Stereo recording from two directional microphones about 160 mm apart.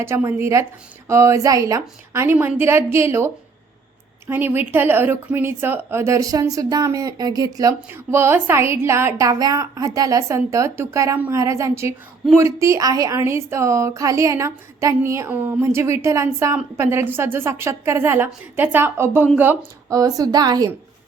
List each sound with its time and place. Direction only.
0.0 s a woman's voice: 15° right (ahead or behind)